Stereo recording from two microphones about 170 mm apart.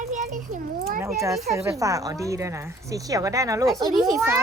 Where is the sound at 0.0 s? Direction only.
45° right (ahead or behind).